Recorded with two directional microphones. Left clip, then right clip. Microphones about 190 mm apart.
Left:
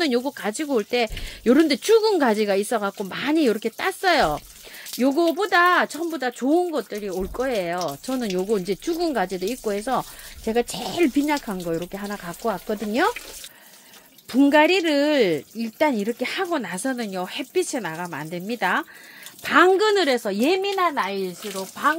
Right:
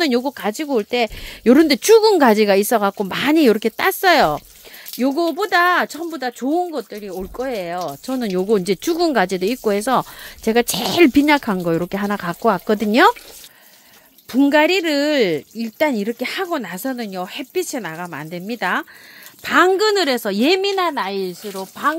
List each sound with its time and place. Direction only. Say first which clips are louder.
0.0 s speech: right 4 dB; 40° right (ahead or behind)
4.9 s speech: right 1 dB; 25° right (ahead or behind)
8.1 s speech: right 6 dB; 40° right (ahead or behind); by 13.1 s 55° right (ahead or behind)
14.3 s speech: right 2 dB; 30° right (ahead or behind); by 21.9 s 55° right (ahead or behind)